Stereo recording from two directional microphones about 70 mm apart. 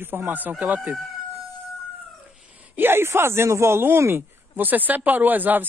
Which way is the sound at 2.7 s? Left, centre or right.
Right.